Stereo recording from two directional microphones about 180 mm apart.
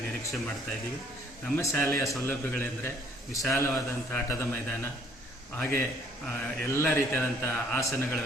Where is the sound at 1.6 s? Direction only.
15° left (ahead or behind).